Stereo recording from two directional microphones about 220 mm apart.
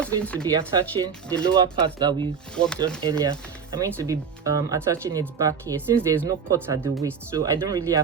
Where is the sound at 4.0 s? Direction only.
15° right (ahead or behind).